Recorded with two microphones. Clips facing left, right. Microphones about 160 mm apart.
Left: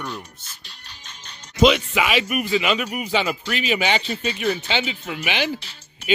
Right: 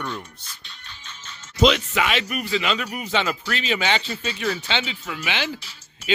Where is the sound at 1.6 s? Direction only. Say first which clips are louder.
Left 2 dB; 10° left (ahead or behind).